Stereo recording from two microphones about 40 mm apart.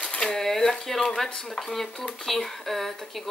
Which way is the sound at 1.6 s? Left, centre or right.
Centre.